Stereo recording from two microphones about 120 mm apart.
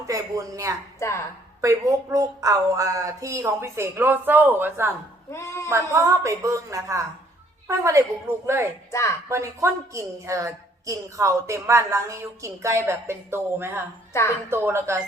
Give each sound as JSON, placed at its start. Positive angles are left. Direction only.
{"t": 0.0, "sound": "a woman's voice", "side_deg": -30}
{"t": 0.9, "sound": "a woman's voice", "side_deg": 25}
{"t": 1.6, "sound": "a woman's voice", "side_deg": -25}
{"t": 5.3, "sound": "speech", "side_deg": 25}
{"t": 5.6, "sound": "a woman's voice", "side_deg": -25}
{"t": 8.4, "sound": "a woman's voice", "side_deg": -20}
{"t": 8.9, "sound": "a woman's voice", "side_deg": 25}
{"t": 9.3, "sound": "a woman's voice", "side_deg": -25}
{"t": 14.1, "sound": "a woman's voice", "side_deg": 20}
{"t": 14.5, "sound": "a woman's voice", "side_deg": -20}